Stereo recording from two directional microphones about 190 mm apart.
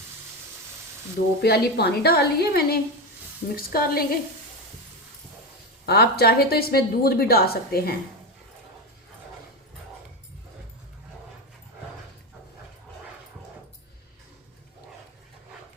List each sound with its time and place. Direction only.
1.4 s a woman's voice: 55° left (ahead or behind)
5.8 s a woman's voice: 55° left (ahead or behind)